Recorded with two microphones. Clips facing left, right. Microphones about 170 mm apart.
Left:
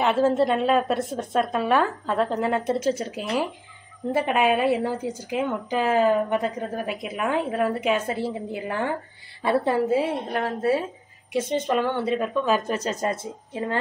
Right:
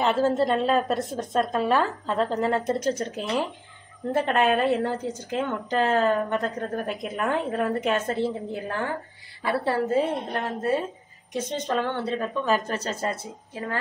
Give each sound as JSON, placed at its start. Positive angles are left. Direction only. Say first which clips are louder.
{"t": 0.0, "sound": "a woman's voice", "louder": "left 2 dB", "side_deg": 0}
{"t": 9.8, "sound": "a woman's voice", "louder": "left 1 dB", "side_deg": 5}